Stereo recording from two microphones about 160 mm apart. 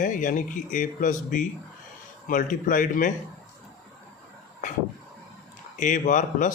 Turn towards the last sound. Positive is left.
turn(degrees=55)  # may be behind; listen again after turning